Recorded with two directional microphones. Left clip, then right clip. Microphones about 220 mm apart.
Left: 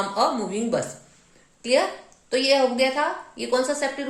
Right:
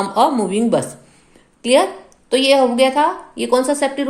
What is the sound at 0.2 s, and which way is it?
Speech, 40° right (ahead or behind).